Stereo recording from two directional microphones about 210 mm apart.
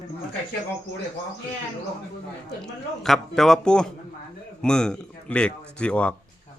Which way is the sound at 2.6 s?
Centre (ahead or behind).